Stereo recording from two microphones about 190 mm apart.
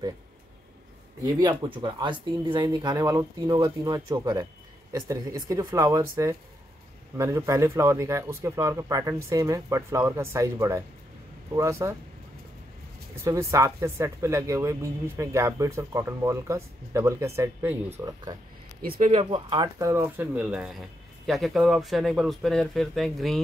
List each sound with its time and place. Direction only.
1.2 s speech: 20° right (ahead or behind)
13.2 s speech: 15° right (ahead or behind)
18.8 s speech: 50° right (ahead or behind)
19.0 s speech: 30° right (ahead or behind); by 23.4 s centre (ahead or behind)